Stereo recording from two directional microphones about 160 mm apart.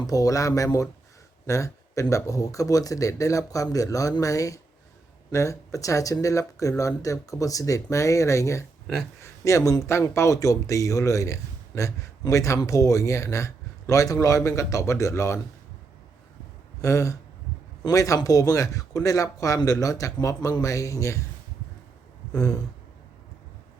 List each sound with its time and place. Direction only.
0.0 s speech: 20° left (ahead or behind)
16.8 s speech: 20° left (ahead or behind)
22.3 s a sound: 20° left (ahead or behind)